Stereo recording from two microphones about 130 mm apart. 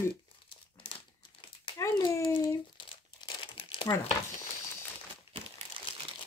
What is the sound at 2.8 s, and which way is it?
Crumpling, 40° left (ahead or behind).